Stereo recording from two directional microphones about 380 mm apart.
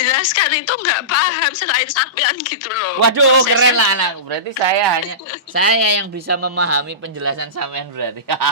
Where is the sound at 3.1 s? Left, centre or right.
Right.